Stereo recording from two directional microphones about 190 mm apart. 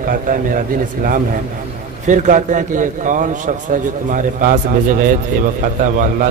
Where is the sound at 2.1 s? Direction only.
40° right (ahead or behind).